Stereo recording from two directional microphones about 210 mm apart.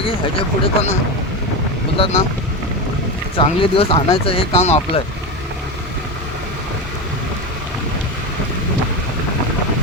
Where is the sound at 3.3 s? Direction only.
25° left (ahead or behind).